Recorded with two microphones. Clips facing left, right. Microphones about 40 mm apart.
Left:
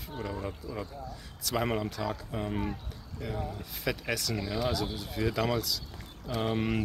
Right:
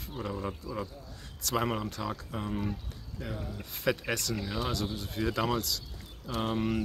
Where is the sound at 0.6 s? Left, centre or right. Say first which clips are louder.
Right 1 dB; left.